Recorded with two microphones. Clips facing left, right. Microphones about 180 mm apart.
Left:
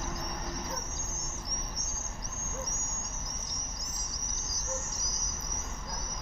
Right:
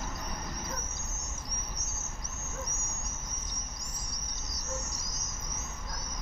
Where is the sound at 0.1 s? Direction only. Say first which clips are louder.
Left 2 dB; 40° left (ahead or behind).